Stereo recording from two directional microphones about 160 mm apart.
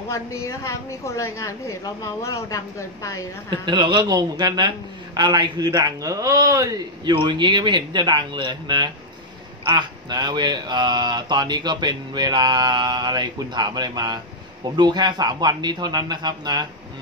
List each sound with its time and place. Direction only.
0.1 s a woman's voice: 20° left (ahead or behind)
3.4 s a man's voice: 30° right (ahead or behind)